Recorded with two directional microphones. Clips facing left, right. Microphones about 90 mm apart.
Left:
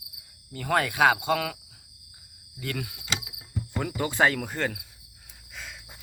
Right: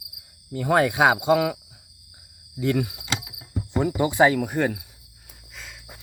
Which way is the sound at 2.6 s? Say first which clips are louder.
Right 11 dB; 20° right (ahead or behind).